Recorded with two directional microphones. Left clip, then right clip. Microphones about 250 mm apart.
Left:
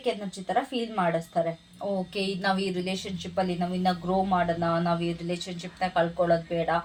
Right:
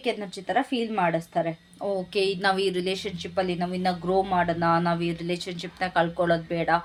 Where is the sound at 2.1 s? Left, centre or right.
Right.